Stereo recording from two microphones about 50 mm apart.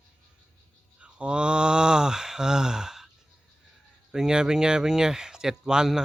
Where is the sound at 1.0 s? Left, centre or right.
Right.